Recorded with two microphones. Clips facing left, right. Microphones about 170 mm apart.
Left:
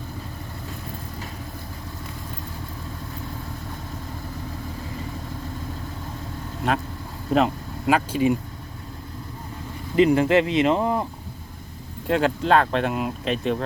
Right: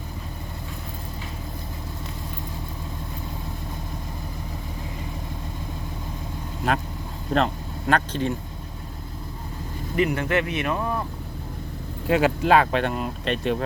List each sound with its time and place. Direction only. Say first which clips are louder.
6.6 s speech: even; centre (ahead or behind)
9.9 s speech: left 6 dB; 25° left (ahead or behind)
12.0 s speech: right 1 dB; 5° right (ahead or behind)